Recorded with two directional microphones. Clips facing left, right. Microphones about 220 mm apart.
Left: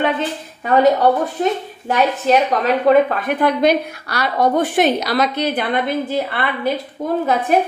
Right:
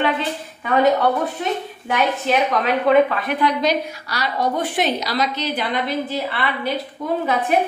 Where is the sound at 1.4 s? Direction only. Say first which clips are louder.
Left 5 dB; 40° left (ahead or behind).